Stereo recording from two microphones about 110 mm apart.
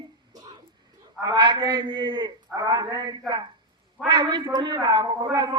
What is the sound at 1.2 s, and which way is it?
A man's voice, 45° right (ahead or behind).